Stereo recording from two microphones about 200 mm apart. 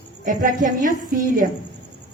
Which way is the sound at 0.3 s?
40° right (ahead or behind).